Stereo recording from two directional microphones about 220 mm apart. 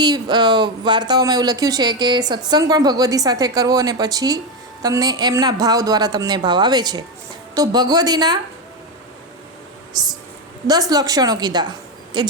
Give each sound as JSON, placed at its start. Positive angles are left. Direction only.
{"t": 0.0, "sound": "speech", "side_deg": -20}
{"t": 9.9, "sound": "speech", "side_deg": -20}